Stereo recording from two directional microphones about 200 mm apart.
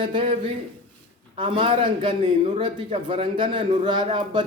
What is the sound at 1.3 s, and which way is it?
A man's voice, 25° right (ahead or behind).